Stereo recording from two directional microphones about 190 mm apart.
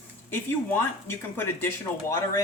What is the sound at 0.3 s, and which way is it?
Speech, 10° left (ahead or behind).